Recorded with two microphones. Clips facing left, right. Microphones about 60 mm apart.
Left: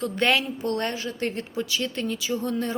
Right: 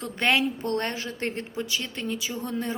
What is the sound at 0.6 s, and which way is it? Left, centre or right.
A woman's voice, right.